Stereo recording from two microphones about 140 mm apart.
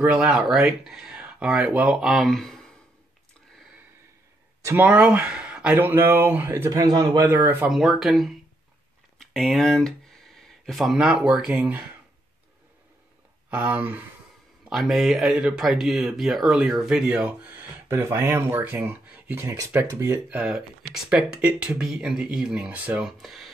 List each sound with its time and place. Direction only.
0.0 s speech: 10° right (ahead or behind)
4.6 s speech: 10° right (ahead or behind)
6.8 s a man's voice: 30° right (ahead or behind)
7.6 s speech: centre (ahead or behind)
13.5 s speech: 10° right (ahead or behind)